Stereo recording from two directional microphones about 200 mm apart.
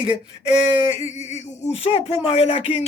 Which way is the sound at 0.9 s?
35° left (ahead or behind).